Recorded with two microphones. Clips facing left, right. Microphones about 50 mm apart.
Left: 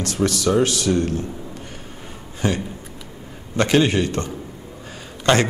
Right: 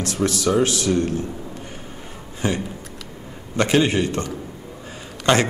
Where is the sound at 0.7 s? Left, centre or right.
Right.